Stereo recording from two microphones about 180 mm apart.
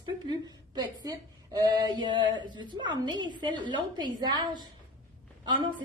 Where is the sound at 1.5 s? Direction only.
20° right (ahead or behind).